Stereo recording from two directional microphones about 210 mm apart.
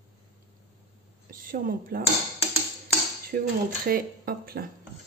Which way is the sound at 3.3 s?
50° right (ahead or behind).